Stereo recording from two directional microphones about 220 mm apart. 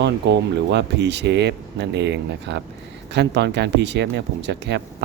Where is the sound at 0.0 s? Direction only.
50° right (ahead or behind).